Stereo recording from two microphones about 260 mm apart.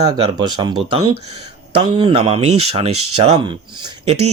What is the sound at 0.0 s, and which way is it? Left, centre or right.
Speech, centre.